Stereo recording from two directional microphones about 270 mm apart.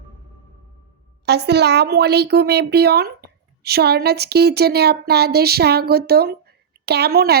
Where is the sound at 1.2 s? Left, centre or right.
Right.